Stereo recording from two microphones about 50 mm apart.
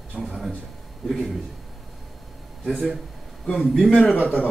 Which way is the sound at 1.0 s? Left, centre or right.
Centre.